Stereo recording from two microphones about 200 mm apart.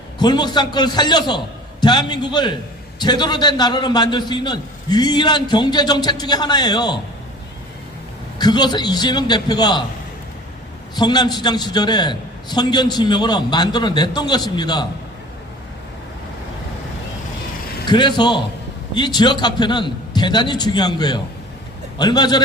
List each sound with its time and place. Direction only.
0.2 s a man's voice: 20° left (ahead or behind)
8.4 s a man's voice: 20° left (ahead or behind)
10.9 s a man's voice: 20° left (ahead or behind)
17.8 s a man's voice: 20° left (ahead or behind)